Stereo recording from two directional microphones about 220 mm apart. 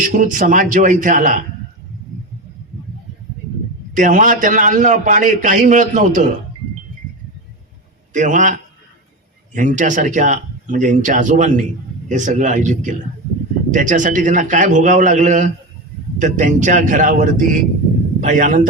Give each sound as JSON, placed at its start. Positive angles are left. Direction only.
{"t": 0.0, "sound": "a man's voice", "side_deg": -35}
{"t": 3.9, "sound": "a man's voice", "side_deg": -35}
{"t": 8.1, "sound": "a man's voice", "side_deg": -35}